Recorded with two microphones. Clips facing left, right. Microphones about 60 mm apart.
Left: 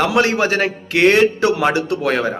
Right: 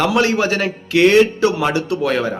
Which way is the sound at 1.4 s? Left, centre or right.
Left.